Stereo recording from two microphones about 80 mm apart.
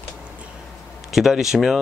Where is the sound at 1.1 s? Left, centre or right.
Centre.